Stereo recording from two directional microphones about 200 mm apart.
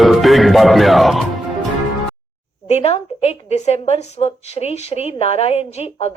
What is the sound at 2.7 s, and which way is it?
A woman's voice, 30° left (ahead or behind).